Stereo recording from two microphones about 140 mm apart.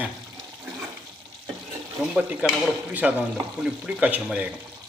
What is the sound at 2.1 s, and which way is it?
Speech, 5° right (ahead or behind).